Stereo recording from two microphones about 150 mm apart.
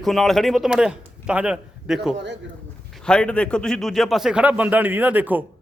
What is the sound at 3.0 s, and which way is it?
Speech, 5° left (ahead or behind).